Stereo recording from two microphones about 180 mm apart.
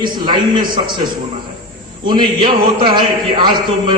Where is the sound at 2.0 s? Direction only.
25° right (ahead or behind).